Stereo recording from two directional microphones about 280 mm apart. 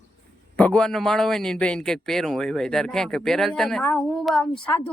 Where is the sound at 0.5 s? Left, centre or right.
Centre.